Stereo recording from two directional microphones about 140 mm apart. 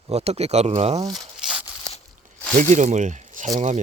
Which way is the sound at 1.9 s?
5° left (ahead or behind).